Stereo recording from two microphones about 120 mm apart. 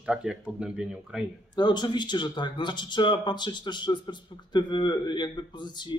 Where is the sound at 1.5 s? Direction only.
40° left (ahead or behind).